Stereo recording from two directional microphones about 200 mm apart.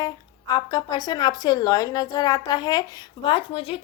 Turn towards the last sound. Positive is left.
turn(degrees=25)  # may be behind; listen again after turning